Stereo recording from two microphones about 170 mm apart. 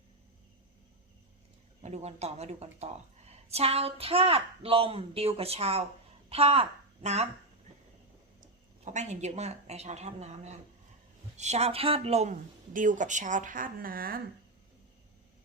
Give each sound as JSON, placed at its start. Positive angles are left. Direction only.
{"t": 1.8, "sound": "a woman's voice", "side_deg": -40}
{"t": 8.8, "sound": "a woman's voice", "side_deg": -45}